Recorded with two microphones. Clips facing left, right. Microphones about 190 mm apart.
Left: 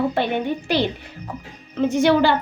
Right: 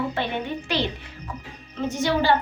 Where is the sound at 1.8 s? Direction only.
60° left (ahead or behind).